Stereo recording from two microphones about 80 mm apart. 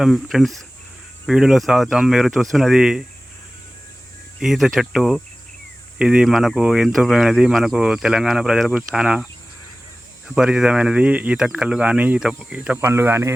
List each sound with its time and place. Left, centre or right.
0.0 s speech: centre
4.4 s speech: centre
6.0 s speech: centre
6.2 s speech: centre
10.3 s speech: centre
12.5 s speech: right
12.9 s speech: right